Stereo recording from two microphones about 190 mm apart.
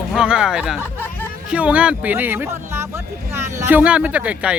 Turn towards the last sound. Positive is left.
turn(degrees=-5)  # may be behind; listen again after turning